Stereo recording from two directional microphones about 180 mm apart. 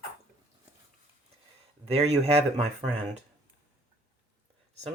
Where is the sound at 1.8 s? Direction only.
35° right (ahead or behind).